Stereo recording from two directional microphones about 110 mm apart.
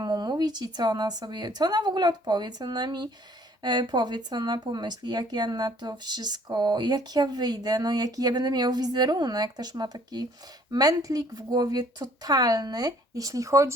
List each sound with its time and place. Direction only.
0.0 s speech: 40° right (ahead or behind)